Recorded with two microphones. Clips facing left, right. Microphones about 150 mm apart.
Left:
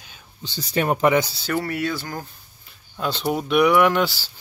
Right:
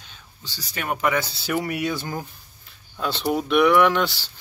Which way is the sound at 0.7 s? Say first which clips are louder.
Left 6 dB; 35° left (ahead or behind).